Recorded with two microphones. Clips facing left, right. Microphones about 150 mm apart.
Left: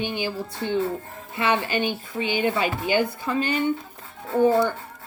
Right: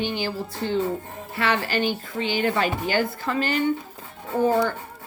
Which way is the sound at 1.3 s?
20° left (ahead or behind).